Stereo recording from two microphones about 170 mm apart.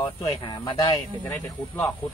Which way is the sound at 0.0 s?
25° left (ahead or behind).